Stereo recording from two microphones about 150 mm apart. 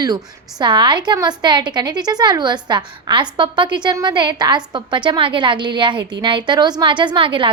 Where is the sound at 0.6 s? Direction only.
30° right (ahead or behind).